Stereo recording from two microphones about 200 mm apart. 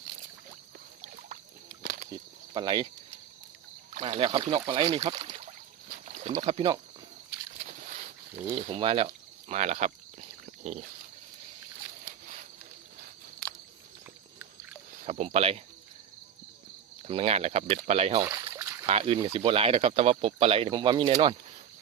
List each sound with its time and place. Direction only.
1.0 s a sound: 40° right (ahead or behind)
2.5 s speech: 25° right (ahead or behind)
3.9 s speech: 25° right (ahead or behind)
6.1 s boat: 35° right (ahead or behind)
6.3 s speech: 25° right (ahead or behind)
7.6 s boat: 40° right (ahead or behind)
8.8 s a sound: 30° right (ahead or behind)
15.0 s speech: 30° right (ahead or behind)
17.0 s speech: 30° right (ahead or behind)
18.2 s splash: 15° right (ahead or behind)
18.9 s speech: 30° right (ahead or behind)